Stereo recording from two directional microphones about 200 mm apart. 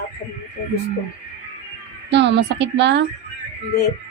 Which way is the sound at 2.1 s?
60° right (ahead or behind).